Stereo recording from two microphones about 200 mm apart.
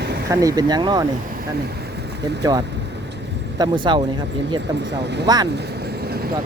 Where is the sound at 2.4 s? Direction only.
20° right (ahead or behind).